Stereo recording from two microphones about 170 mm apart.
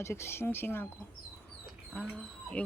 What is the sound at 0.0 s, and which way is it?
Speech, 15° left (ahead or behind).